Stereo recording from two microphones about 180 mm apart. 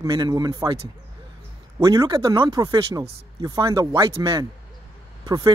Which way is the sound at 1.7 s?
20° right (ahead or behind).